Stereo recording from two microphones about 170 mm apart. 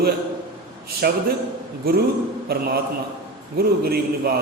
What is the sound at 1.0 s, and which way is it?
Speech, 65° right (ahead or behind).